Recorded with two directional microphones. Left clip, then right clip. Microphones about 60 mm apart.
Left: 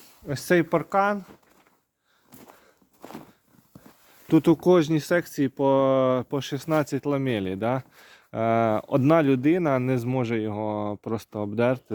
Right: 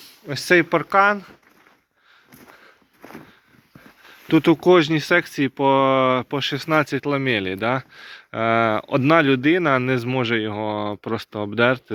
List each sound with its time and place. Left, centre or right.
0.5 s speech: left
0.9 s speech: left
2.3 s a sound: left
3.0 s a sound: centre
4.4 s speech: centre; by 7.9 s left
7.9 s speech: left
9.2 s speech: left